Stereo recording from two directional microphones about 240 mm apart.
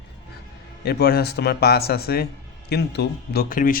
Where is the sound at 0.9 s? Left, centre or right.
Left.